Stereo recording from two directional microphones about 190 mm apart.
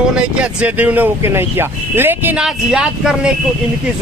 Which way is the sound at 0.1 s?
5° right (ahead or behind).